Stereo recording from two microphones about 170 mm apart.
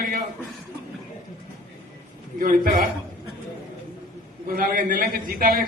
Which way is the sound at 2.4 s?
60° right (ahead or behind).